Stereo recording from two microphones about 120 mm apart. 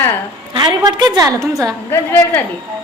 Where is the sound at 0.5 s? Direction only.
40° right (ahead or behind).